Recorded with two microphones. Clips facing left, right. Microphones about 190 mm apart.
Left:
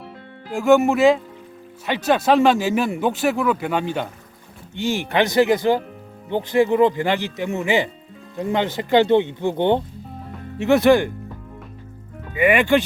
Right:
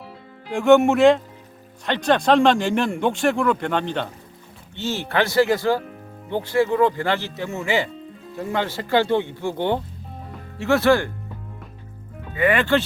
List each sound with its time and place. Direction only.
0.4 s speech: centre (ahead or behind); by 11.1 s 20° left (ahead or behind)
12.3 s speech: 15° left (ahead or behind)